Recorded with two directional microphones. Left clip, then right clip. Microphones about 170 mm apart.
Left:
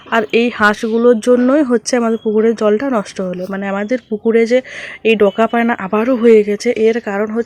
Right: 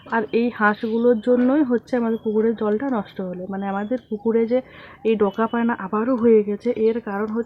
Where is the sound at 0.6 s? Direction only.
20° left (ahead or behind).